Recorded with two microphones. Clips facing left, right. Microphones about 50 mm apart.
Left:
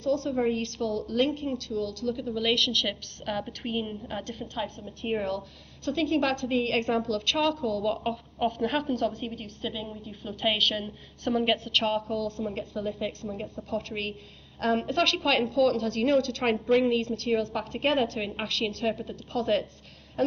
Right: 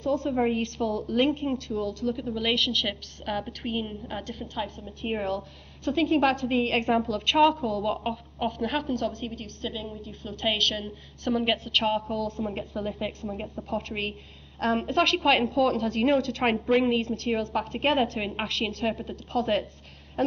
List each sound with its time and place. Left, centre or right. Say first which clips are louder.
0.0 s a woman's voice: right 1 dB; centre
2.2 s a woman's voice: left 2 dB; centre
8.0 s a woman's voice: left 1 dB; centre